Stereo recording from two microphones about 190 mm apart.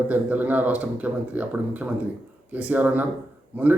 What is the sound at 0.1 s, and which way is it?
A man's voice, 10° right (ahead or behind).